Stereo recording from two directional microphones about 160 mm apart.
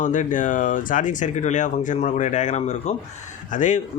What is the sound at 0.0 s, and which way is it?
Speech, 50° left (ahead or behind).